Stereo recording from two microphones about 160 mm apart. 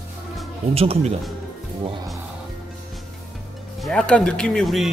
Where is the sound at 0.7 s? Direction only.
40° right (ahead or behind).